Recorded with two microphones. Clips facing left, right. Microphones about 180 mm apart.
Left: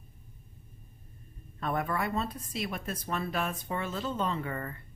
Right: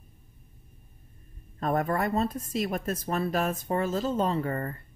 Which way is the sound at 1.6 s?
40° right (ahead or behind).